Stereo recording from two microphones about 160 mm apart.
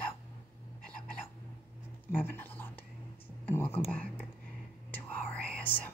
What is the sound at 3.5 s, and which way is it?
Whispering, 15° left (ahead or behind).